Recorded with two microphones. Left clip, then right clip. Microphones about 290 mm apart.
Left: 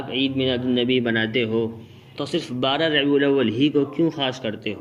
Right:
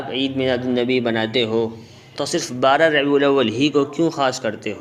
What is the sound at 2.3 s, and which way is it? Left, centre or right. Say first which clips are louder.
Speech: right 6 dB; right.